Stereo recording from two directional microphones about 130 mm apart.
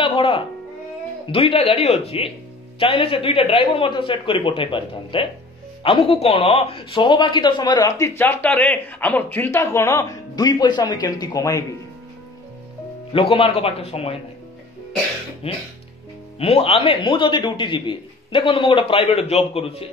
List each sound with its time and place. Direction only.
0.0 s music: 45° left (ahead or behind)
1.3 s a man's voice: 50° left (ahead or behind)
8.2 s speech: 15° left (ahead or behind)
13.1 s a man's voice: 50° left (ahead or behind)
15.4 s a man's voice: 50° left (ahead or behind)